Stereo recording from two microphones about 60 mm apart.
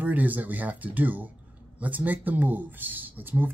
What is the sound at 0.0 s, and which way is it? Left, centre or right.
Speech, right.